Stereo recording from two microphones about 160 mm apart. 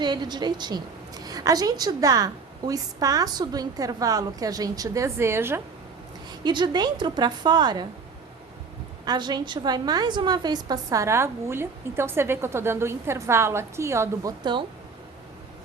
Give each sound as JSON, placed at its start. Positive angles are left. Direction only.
{"t": 0.0, "sound": "a woman's voice", "side_deg": -25}
{"t": 6.4, "sound": "a woman's voice", "side_deg": -30}
{"t": 9.0, "sound": "a woman's voice", "side_deg": -25}